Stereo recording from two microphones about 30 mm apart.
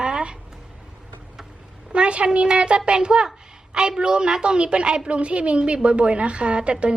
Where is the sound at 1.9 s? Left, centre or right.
Right.